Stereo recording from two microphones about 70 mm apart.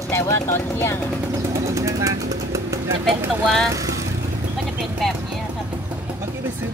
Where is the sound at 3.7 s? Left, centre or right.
Right.